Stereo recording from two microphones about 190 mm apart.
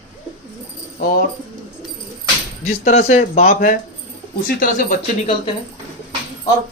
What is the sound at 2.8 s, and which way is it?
Speech, 35° left (ahead or behind).